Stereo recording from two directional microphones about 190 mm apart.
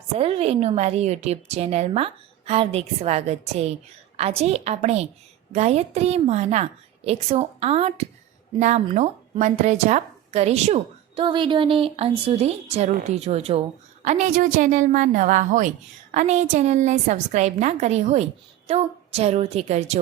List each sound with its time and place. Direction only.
0.2 s speech: 30° right (ahead or behind)